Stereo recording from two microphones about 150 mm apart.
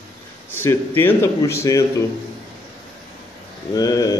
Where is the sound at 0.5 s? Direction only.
15° left (ahead or behind).